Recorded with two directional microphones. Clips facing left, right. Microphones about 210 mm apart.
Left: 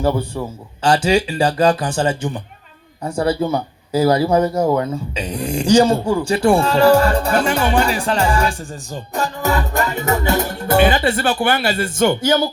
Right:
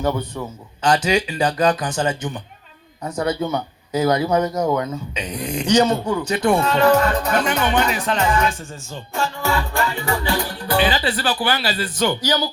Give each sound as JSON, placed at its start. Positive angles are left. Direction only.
{"t": 0.3, "sound": "speech", "side_deg": 30}